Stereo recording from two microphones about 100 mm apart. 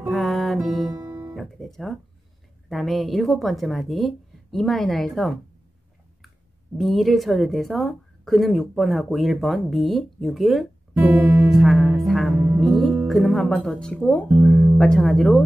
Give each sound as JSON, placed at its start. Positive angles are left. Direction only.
{"t": 0.0, "sound": "music", "side_deg": 0}
{"t": 1.0, "sound": "guitar", "side_deg": -25}
{"t": 1.3, "sound": "guitar", "side_deg": 0}
{"t": 2.7, "sound": "a woman's voice", "side_deg": 0}
{"t": 6.8, "sound": "a woman's voice", "side_deg": 0}
{"t": 11.0, "sound": "music", "side_deg": -20}
{"t": 11.5, "sound": "music", "side_deg": 0}
{"t": 12.3, "sound": "music", "side_deg": -20}
{"t": 12.5, "sound": "music", "side_deg": 0}
{"t": 13.1, "sound": "a woman's voice", "side_deg": 0}